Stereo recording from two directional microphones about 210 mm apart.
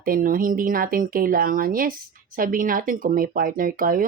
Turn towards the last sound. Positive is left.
turn(degrees=-40)  # may be behind; listen again after turning